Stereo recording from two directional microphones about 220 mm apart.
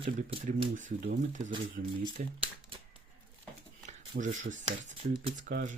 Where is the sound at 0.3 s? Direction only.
30° right (ahead or behind).